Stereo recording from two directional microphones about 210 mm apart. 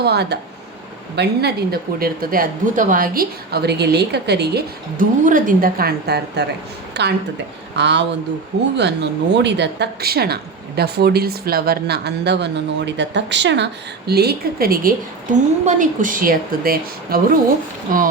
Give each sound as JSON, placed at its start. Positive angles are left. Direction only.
{"t": 0.0, "sound": "a woman's voice", "side_deg": -50}